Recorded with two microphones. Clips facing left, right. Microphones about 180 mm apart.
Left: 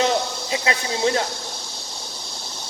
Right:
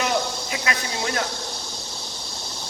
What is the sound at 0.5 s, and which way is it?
Speech, 25° left (ahead or behind).